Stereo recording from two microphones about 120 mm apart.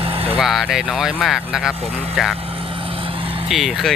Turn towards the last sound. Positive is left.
turn(degrees=0)  # may be behind; listen again after turning